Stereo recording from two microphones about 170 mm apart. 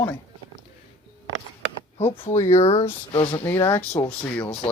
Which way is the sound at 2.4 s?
40° left (ahead or behind).